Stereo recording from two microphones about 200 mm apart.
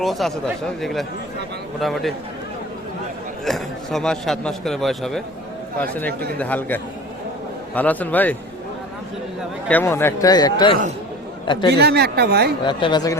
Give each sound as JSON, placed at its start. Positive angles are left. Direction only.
{"t": 0.0, "sound": "speech", "side_deg": 0}
{"t": 3.4, "sound": "a man's voice", "side_deg": 0}
{"t": 9.6, "sound": "a man's voice", "side_deg": 10}
{"t": 11.7, "sound": "a woman's voice", "side_deg": -55}
{"t": 12.6, "sound": "speech", "side_deg": 20}